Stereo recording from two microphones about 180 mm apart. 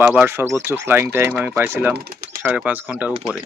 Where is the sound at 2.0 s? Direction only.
55° right (ahead or behind).